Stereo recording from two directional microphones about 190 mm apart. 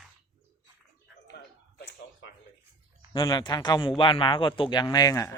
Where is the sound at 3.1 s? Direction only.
25° left (ahead or behind).